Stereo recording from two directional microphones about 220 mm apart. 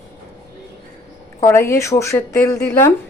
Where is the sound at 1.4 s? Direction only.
15° left (ahead or behind).